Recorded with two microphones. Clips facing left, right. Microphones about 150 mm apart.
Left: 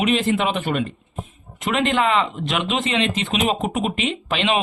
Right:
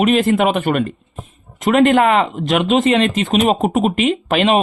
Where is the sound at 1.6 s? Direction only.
45° right (ahead or behind).